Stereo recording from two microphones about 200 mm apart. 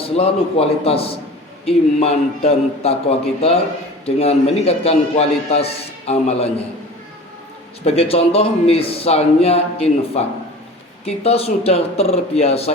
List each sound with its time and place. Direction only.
0.0 s a man's voice: 30° left (ahead or behind)
7.9 s a man's voice: 30° left (ahead or behind)